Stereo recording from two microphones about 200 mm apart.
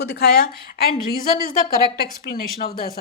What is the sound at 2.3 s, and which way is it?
Speech, 50° left (ahead or behind).